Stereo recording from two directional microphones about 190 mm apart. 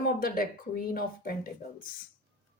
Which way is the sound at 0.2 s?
50° left (ahead or behind).